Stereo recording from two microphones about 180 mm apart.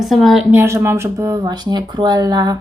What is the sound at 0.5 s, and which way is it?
Speech, 10° right (ahead or behind).